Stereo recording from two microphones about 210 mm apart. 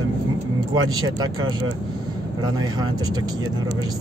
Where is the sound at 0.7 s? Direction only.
20° right (ahead or behind).